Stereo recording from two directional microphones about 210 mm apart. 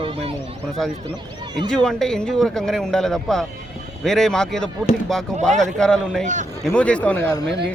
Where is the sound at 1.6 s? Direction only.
5° left (ahead or behind).